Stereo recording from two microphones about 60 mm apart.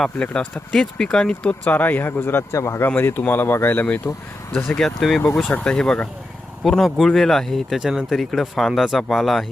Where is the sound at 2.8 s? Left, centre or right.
Left.